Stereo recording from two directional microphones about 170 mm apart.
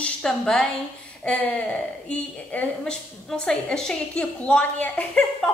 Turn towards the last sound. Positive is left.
turn(degrees=5)  # may be behind; listen again after turning